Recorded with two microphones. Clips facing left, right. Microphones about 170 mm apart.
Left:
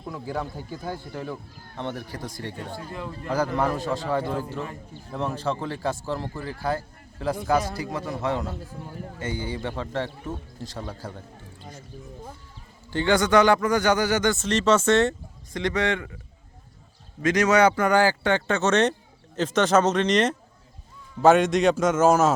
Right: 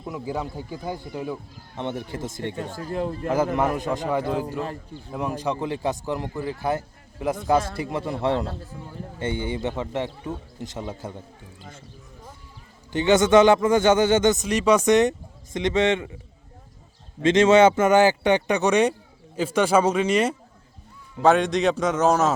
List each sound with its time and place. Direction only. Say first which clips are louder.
0.1 s a man's voice: right 2 dB; 15° right (ahead or behind)
2.7 s a man's voice: right 7 dB; 45° right (ahead or behind)
3.2 s a man's voice: right 1 dB; 20° right (ahead or behind)
12.9 s a man's voice: right 3 dB; 20° right (ahead or behind)
17.2 s a man's voice: right 4 dB; 25° right (ahead or behind); by 22.3 s centre (ahead or behind)